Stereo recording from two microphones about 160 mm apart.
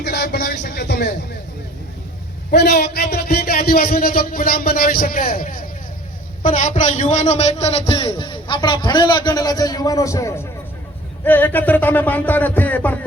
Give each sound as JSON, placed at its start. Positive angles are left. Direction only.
{"t": 0.0, "sound": "speech", "side_deg": 90}
{"t": 2.5, "sound": "a man's voice", "side_deg": 90}